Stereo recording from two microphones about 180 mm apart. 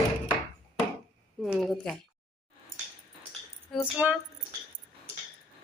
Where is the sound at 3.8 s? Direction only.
5° right (ahead or behind).